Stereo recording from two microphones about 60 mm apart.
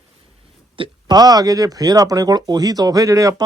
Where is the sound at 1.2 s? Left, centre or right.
Right.